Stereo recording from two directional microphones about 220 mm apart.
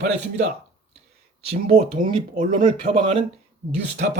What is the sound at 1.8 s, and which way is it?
Speech, 40° right (ahead or behind).